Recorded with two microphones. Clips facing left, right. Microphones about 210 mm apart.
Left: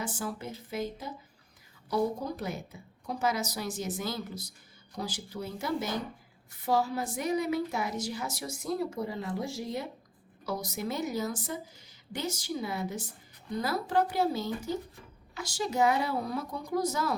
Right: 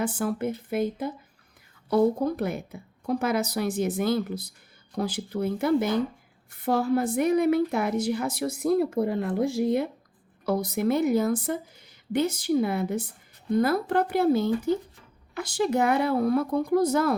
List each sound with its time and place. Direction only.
0.0 s a woman's voice: 60° right (ahead or behind)